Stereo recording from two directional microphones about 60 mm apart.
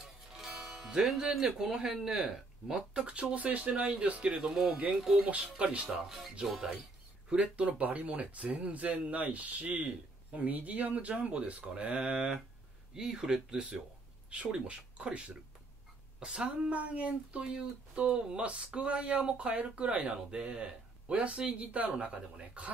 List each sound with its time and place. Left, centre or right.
0.0 s music: centre
2.0 s speech: centre; by 4.3 s right
4.4 s speech: centre
5.2 s speech: right
5.9 s speech: centre
7.2 s speech: right